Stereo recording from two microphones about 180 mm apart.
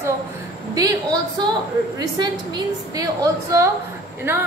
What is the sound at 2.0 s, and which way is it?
A woman's voice, 25° right (ahead or behind).